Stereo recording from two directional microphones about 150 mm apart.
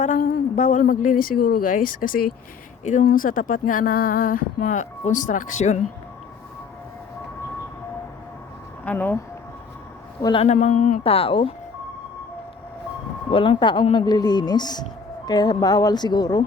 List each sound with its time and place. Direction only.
0.0 s a sound: 65° left (ahead or behind)
0.6 s speech: 55° left (ahead or behind); by 2.3 s 70° left (ahead or behind)
2.8 s speech: 60° left (ahead or behind)
8.8 s speech: 10° left (ahead or behind)
10.2 s speech: 25° left (ahead or behind)
10.4 s speech: 50° left (ahead or behind)
11.0 s speech: 40° left (ahead or behind)
13.3 s speech: 35° left (ahead or behind)